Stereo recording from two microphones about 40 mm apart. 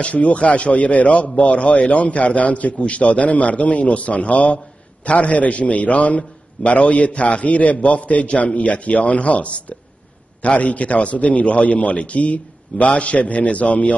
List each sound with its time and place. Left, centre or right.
0.0 s a man's voice: left